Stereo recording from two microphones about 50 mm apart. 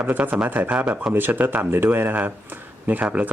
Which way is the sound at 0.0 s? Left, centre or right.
Right.